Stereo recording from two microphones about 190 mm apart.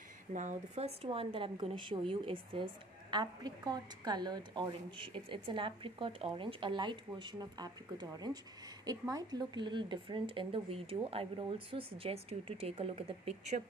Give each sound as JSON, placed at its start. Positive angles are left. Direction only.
{"t": 0.3, "sound": "speech", "side_deg": -40}